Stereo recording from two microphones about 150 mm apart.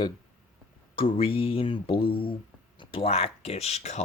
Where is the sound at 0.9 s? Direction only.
40° left (ahead or behind).